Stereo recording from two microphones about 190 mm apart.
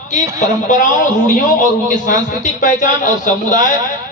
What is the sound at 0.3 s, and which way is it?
A man's voice, 40° left (ahead or behind).